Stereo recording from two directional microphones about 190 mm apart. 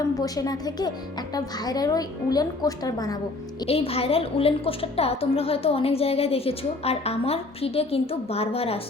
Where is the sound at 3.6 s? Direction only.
30° left (ahead or behind).